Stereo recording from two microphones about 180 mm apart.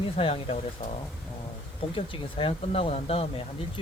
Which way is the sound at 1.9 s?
30° left (ahead or behind).